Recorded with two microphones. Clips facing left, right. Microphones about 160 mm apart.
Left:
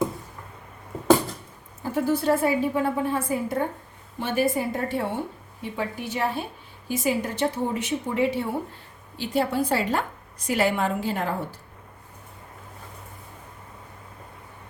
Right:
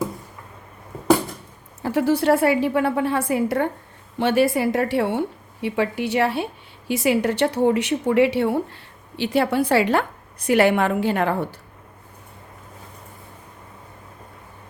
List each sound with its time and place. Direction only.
1.8 s a woman's voice: 75° right (ahead or behind)